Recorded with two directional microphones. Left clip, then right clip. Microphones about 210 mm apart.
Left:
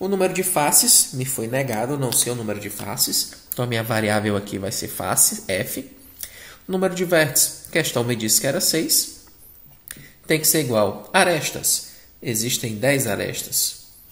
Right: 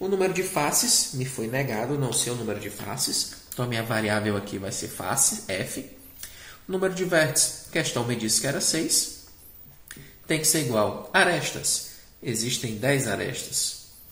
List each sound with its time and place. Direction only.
0.0 s speech: 45° left (ahead or behind)
10.2 s speech: 45° left (ahead or behind)